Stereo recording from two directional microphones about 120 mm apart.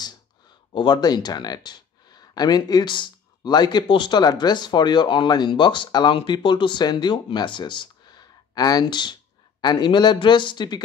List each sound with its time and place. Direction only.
0.7 s speech: 40° left (ahead or behind)